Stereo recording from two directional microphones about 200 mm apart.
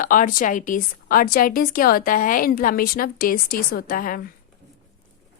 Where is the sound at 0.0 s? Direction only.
40° left (ahead or behind).